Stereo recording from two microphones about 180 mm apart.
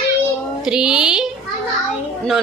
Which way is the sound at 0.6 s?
5° right (ahead or behind).